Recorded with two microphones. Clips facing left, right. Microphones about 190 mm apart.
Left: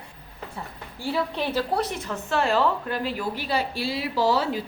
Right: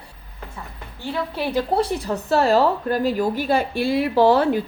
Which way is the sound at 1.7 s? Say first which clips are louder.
Right 6 dB; 30° right (ahead or behind).